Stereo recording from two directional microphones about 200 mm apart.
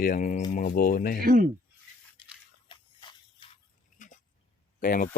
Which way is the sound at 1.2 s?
45° right (ahead or behind).